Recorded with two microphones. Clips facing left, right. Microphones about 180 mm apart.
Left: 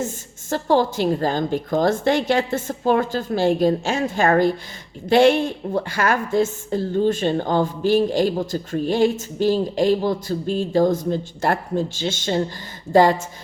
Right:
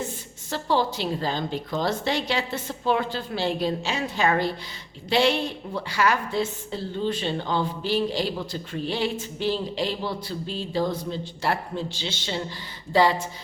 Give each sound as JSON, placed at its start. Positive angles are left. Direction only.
{"t": 0.5, "sound": "a woman's voice", "side_deg": 50}